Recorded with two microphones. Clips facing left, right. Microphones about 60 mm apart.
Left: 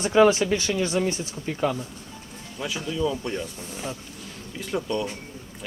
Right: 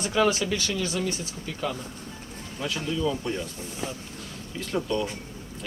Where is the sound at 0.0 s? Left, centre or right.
Left.